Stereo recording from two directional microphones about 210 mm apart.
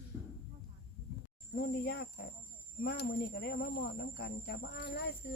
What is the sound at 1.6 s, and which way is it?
Speech, 50° left (ahead or behind).